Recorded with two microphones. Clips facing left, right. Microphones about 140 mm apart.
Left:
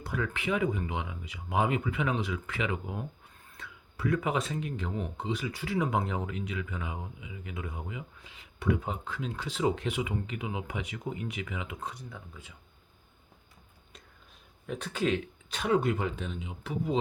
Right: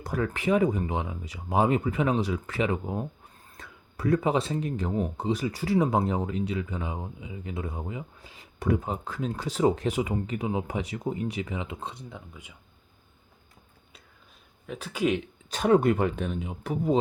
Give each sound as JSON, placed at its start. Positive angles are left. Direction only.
{"t": 0.0, "sound": "speech", "side_deg": -40}
{"t": 14.7, "sound": "speech", "side_deg": -5}
{"t": 15.4, "sound": "speech", "side_deg": -40}